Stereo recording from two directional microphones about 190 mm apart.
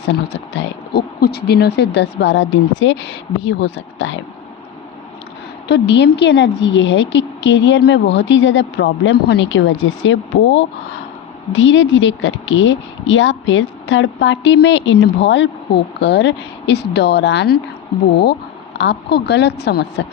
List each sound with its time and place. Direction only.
0.0 s speech: 65° left (ahead or behind)
5.6 s a woman's voice: 65° left (ahead or behind)
18.8 s speech: 65° left (ahead or behind)